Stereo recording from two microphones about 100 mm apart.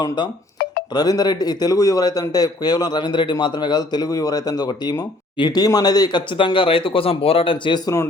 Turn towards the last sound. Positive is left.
turn(degrees=55)  # may be behind; listen again after turning